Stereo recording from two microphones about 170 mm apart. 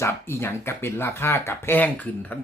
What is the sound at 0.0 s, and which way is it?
Speech, 15° left (ahead or behind).